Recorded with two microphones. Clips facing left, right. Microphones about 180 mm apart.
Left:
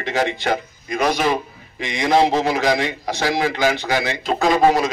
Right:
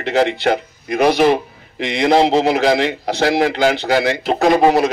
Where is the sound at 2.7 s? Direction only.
65° right (ahead or behind).